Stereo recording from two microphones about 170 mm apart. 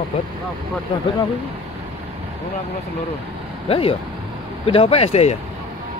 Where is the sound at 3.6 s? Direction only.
35° left (ahead or behind).